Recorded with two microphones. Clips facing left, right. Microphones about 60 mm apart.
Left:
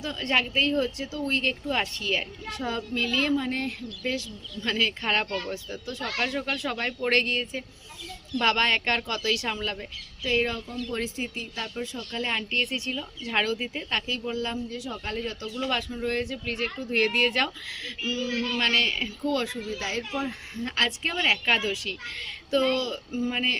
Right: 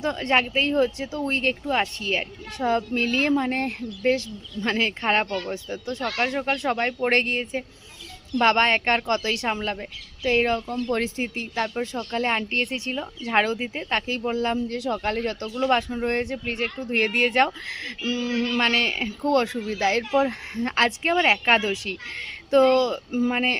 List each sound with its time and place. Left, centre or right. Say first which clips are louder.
0.2 s speech: right 1 dB; right
2.6 s speech: right 7 dB; right
5.6 s speech: right 5 dB; right
6.1 s speech: right 3 dB; right
9.0 s speech: right 5 dB; right
9.3 s speech: right 3 dB; right
15.0 s speech: right 6 dB; right
15.9 s speech: right 4 dB; right
17.3 s speech: right 7 dB; right
18.6 s speech: right 3 dB; right
19.2 s speech: right 7 dB; right
19.6 s speech: right 8 dB; right
20.1 s speech: right 9 dB; right